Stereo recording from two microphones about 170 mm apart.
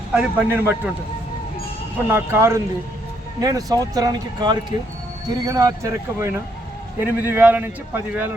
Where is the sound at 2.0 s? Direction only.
15° right (ahead or behind).